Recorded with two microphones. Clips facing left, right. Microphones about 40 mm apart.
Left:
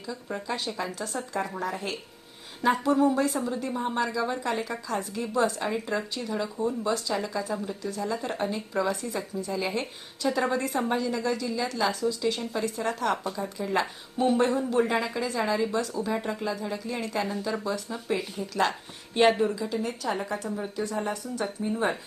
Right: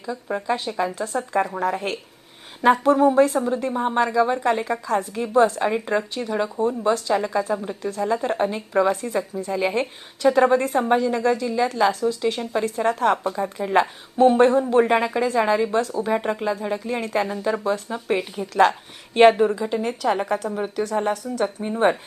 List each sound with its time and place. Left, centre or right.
0.0 s a woman's voice: right
19.8 s a woman's voice: right